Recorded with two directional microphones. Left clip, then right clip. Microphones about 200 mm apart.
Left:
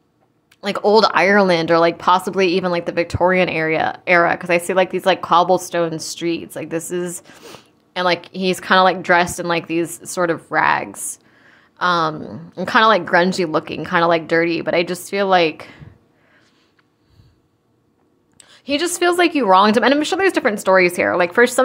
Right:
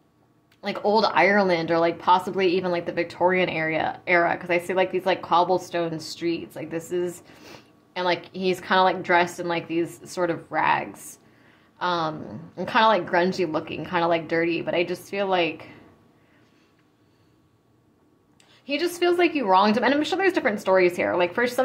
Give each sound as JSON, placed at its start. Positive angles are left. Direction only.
{"t": 0.6, "sound": "speech", "side_deg": 35}
{"t": 18.4, "sound": "speech", "side_deg": 35}